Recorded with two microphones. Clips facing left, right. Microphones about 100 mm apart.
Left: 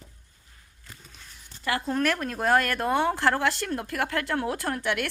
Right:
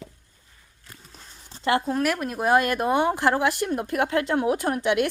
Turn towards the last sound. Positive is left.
turn(degrees=-20)  # may be behind; listen again after turning